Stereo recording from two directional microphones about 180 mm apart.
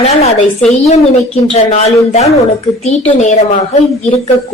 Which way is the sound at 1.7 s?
35° left (ahead or behind).